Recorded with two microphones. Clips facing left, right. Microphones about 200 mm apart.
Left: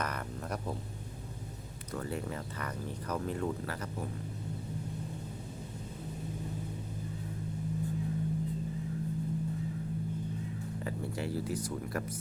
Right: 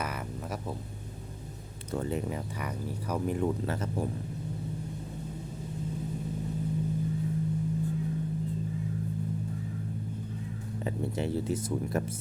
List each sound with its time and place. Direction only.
0.0 s a sound: 5° right (ahead or behind)
1.9 s speech: 20° right (ahead or behind)
10.8 s speech: 25° right (ahead or behind)